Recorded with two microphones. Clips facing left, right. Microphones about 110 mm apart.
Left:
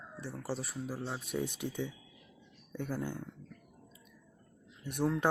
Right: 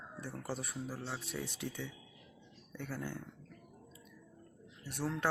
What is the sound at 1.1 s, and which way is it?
Speech, 20° left (ahead or behind).